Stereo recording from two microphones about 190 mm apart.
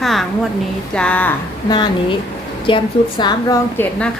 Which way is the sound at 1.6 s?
25° left (ahead or behind).